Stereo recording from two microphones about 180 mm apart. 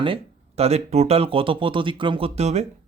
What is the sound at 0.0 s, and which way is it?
Speech, 30° right (ahead or behind).